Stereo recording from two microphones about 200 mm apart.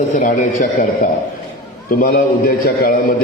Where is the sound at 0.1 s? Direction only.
40° left (ahead or behind).